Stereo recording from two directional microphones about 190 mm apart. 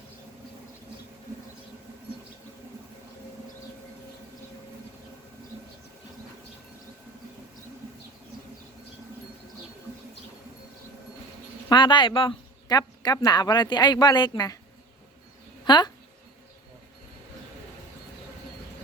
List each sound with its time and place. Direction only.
11.7 s speech: 25° left (ahead or behind)
15.6 s speech: 25° left (ahead or behind)